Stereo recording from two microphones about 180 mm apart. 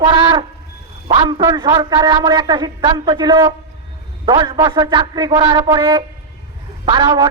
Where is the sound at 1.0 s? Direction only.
25° right (ahead or behind).